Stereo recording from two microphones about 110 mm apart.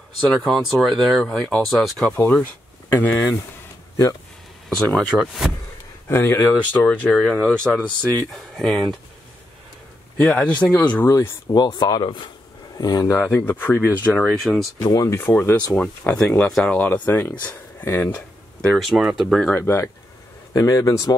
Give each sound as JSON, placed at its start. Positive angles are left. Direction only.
{"t": 0.3, "sound": "speech", "side_deg": 0}
{"t": 4.6, "sound": "speech", "side_deg": 5}
{"t": 6.0, "sound": "speech", "side_deg": 20}
{"t": 10.1, "sound": "speech", "side_deg": 10}
{"t": 11.1, "sound": "speech", "side_deg": 30}
{"t": 12.7, "sound": "speech", "side_deg": 35}
{"t": 14.4, "sound": "speech", "side_deg": 0}
{"t": 14.8, "sound": "speech", "side_deg": 35}
{"t": 15.1, "sound": "speech", "side_deg": 20}
{"t": 15.7, "sound": "speech", "side_deg": 10}
{"t": 17.7, "sound": "a sound", "side_deg": 15}
{"t": 18.8, "sound": "speech", "side_deg": 0}
{"t": 19.5, "sound": "speech", "side_deg": 25}